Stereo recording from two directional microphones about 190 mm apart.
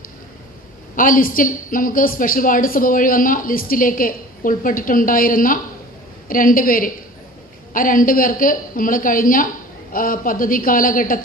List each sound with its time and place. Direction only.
0.9 s a woman's voice: 45° left (ahead or behind)